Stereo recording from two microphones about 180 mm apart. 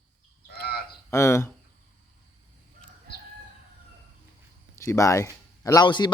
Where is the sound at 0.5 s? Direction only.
60° left (ahead or behind).